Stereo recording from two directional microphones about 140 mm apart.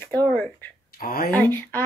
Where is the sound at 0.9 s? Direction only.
90° left.